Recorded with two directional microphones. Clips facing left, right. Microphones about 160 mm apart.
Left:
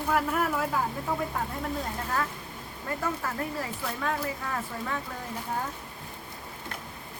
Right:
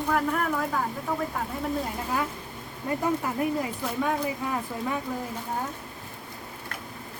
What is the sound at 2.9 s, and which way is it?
Speech, 15° right (ahead or behind).